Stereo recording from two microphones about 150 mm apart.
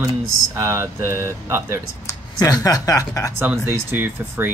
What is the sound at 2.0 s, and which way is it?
Speech, 25° left (ahead or behind).